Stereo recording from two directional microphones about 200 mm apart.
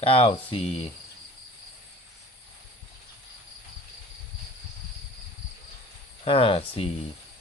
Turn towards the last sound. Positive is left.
turn(degrees=30)  # may be behind; listen again after turning